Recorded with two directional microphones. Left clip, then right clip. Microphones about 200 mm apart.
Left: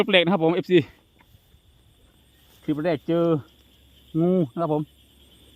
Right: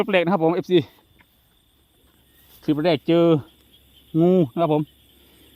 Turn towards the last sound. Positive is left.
turn(degrees=-50)  # may be behind; listen again after turning